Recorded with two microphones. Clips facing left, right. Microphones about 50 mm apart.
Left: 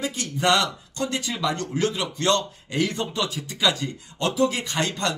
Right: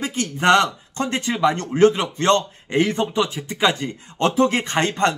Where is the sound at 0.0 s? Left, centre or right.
Right.